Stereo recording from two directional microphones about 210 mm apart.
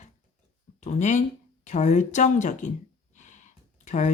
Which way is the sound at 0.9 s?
35° left (ahead or behind).